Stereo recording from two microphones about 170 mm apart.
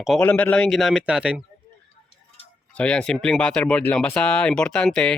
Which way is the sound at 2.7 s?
5° left (ahead or behind).